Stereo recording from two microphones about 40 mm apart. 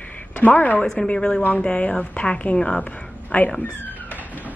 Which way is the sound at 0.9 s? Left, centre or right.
Left.